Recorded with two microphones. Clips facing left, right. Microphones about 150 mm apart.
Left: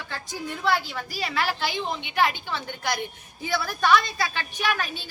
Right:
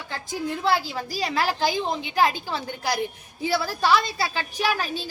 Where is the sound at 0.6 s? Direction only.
35° right (ahead or behind).